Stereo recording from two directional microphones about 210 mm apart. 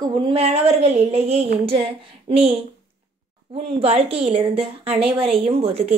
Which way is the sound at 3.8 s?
30° right (ahead or behind).